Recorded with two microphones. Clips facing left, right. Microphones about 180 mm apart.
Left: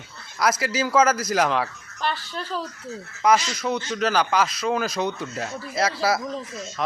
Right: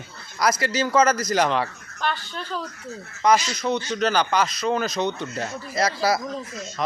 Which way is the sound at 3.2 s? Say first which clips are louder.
Even; 5° left (ahead or behind).